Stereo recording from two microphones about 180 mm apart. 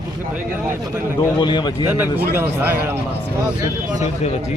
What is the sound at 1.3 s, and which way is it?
Speech, 25° left (ahead or behind).